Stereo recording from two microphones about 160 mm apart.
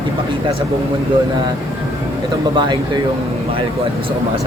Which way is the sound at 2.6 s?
30° right (ahead or behind).